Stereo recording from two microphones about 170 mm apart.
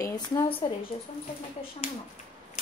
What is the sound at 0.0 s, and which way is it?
Speech, 20° left (ahead or behind).